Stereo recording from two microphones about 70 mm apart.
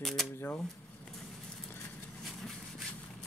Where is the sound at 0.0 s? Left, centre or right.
Centre.